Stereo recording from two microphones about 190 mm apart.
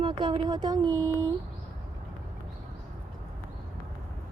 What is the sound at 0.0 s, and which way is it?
Speech, 25° right (ahead or behind).